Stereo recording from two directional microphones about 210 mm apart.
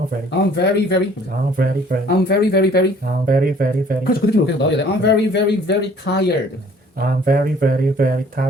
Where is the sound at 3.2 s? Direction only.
45° right (ahead or behind).